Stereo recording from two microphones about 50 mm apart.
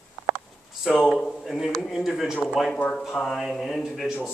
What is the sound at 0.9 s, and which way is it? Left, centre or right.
Speech, centre.